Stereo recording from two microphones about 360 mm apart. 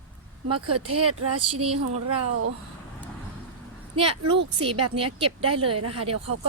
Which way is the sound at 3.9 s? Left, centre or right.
Centre.